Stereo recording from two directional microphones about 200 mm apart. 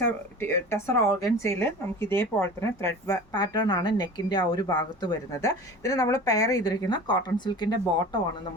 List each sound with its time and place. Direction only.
0.0 s a woman's voice: 10° left (ahead or behind)